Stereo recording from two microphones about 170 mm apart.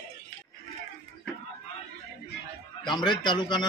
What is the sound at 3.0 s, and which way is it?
Speech, 25° left (ahead or behind).